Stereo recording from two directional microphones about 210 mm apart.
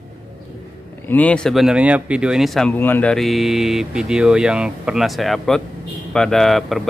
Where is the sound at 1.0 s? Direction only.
5° left (ahead or behind).